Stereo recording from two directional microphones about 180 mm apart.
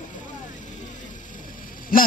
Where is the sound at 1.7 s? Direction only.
50° left (ahead or behind).